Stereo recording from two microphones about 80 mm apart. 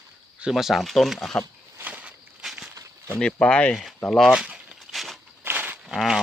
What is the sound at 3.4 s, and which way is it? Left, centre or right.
Speech, centre.